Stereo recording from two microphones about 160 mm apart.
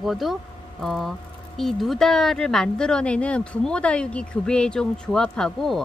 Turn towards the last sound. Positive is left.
turn(degrees=0)  # may be behind; listen again after turning